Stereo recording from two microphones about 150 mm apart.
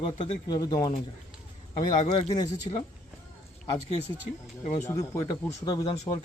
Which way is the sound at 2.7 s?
35° left (ahead or behind).